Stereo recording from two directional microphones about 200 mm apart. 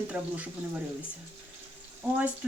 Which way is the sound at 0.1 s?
5° right (ahead or behind).